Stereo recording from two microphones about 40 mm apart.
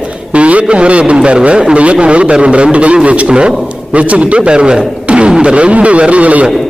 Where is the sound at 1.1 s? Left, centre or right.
Right.